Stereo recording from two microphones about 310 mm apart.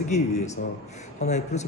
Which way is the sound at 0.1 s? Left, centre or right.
Left.